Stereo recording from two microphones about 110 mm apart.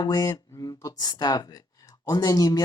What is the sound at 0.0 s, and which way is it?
Speech, 35° left (ahead or behind).